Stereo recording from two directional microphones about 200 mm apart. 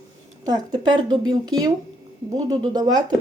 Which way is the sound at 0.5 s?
20° right (ahead or behind).